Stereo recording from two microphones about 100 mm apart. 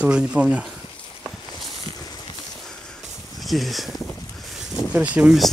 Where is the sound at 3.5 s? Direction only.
Centre (ahead or behind).